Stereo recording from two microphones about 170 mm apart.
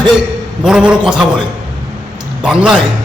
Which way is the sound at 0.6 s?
5° right (ahead or behind).